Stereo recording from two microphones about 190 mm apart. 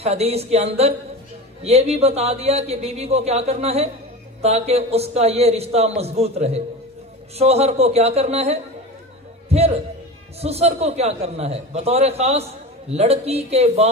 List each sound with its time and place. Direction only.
0.0 s a man's voice: 35° right (ahead or behind)